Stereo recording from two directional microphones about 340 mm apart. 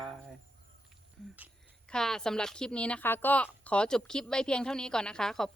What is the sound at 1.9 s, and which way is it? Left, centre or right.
A woman's voice, centre.